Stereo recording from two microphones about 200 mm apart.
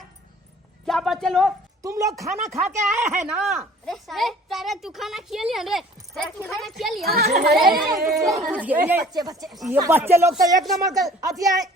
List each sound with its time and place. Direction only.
0.9 s a man's voice: centre (ahead or behind)
1.8 s speech: 15° right (ahead or behind)
2.5 s a woman's voice: centre (ahead or behind)
7.0 s a child's voice: 50° right (ahead or behind)
7.9 s a woman's voice: centre (ahead or behind); by 9.4 s 20° right (ahead or behind)
9.4 s a woman's voice: centre (ahead or behind)
9.8 s speech: 10° right (ahead or behind)